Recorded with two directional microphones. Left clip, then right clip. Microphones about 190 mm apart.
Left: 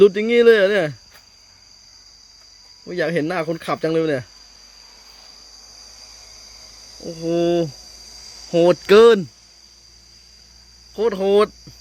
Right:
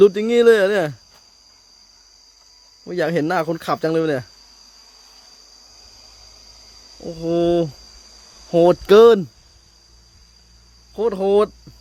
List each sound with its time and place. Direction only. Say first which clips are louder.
0.0 s speech: even; 10° right (ahead or behind)
2.8 s speech: right 1 dB; 20° right (ahead or behind)
7.0 s speech: right 1 dB; 15° right (ahead or behind)
10.9 s speech: even; 10° right (ahead or behind)